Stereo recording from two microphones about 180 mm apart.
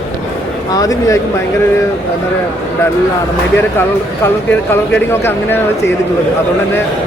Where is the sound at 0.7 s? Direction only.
20° left (ahead or behind).